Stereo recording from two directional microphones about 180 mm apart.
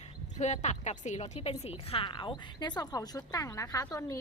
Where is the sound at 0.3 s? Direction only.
40° left (ahead or behind).